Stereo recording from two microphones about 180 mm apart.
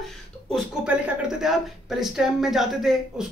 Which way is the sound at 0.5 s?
5° right (ahead or behind).